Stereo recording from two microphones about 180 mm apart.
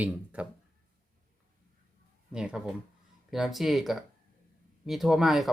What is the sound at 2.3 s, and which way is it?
Speech, 5° right (ahead or behind).